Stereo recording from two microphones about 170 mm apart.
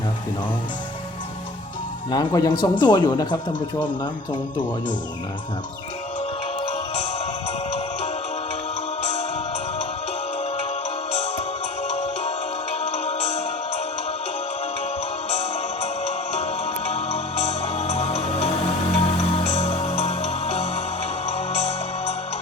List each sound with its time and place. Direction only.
2.0 s a man's voice: 25° left (ahead or behind)
6.6 s music: 35° left (ahead or behind)
11.1 s music: 35° left (ahead or behind)
15.3 s music: 35° left (ahead or behind)